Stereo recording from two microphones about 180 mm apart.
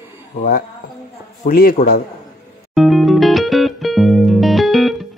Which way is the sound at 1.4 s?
55° left (ahead or behind).